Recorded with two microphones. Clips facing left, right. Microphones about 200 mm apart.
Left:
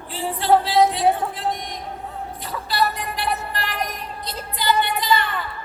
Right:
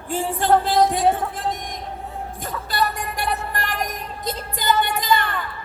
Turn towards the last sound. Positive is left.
turn(degrees=-45)  # may be behind; listen again after turning